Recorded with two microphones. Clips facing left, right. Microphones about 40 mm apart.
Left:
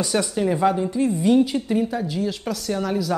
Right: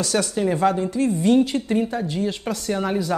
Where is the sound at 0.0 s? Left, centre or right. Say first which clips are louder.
Even; centre.